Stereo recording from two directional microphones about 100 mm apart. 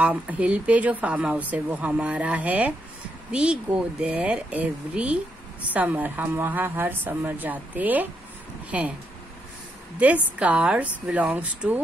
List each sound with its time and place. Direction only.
0.0 s speech: 15° right (ahead or behind)
9.9 s speech: 15° right (ahead or behind)